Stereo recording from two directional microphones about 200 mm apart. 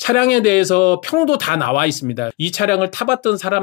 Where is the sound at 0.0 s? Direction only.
45° left (ahead or behind).